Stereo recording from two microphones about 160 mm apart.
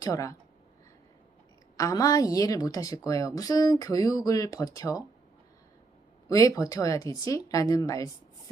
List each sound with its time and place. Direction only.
0.0 s a woman's voice: 20° left (ahead or behind)
1.7 s a woman's voice: 20° left (ahead or behind)
6.2 s a woman's voice: 20° left (ahead or behind)